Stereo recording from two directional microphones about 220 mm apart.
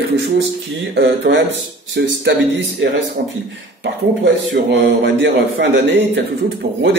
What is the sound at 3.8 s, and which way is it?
A man's voice, 50° right (ahead or behind).